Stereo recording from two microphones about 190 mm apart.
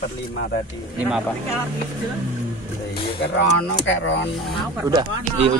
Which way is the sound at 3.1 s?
70° left (ahead or behind).